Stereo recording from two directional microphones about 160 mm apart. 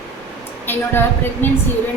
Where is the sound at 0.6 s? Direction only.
15° left (ahead or behind).